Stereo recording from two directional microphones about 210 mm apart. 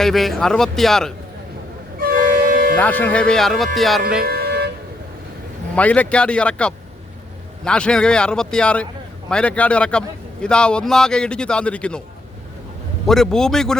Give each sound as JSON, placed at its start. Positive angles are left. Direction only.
{"t": 0.0, "sound": "a man's voice", "side_deg": 0}
{"t": 2.0, "sound": "a sound", "side_deg": -45}
{"t": 2.7, "sound": "a man's voice", "side_deg": 10}
{"t": 4.2, "sound": "a sound", "side_deg": -45}
{"t": 5.7, "sound": "a man's voice", "side_deg": 5}
{"t": 13.1, "sound": "a man's voice", "side_deg": 0}